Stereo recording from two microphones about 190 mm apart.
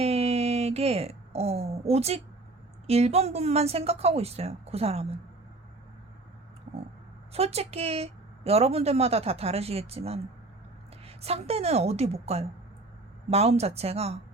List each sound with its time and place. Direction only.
0.0 s a sound: 35° right (ahead or behind)
2.8 s a woman's voice: 35° right (ahead or behind)
7.3 s a woman's voice: 35° right (ahead or behind)